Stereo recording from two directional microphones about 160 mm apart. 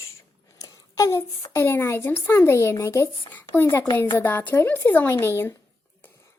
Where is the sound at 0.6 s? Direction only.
20° left (ahead or behind).